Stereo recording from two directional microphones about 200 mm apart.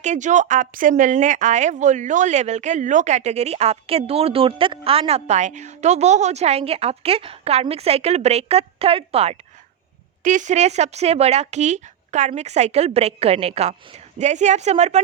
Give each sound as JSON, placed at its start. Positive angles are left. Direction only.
{"t": 0.0, "sound": "speech", "side_deg": -35}